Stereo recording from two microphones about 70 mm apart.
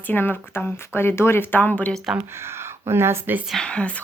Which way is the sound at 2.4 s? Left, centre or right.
Right.